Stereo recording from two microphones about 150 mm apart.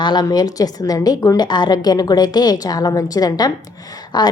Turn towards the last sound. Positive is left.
turn(degrees=30)  # may be behind; listen again after turning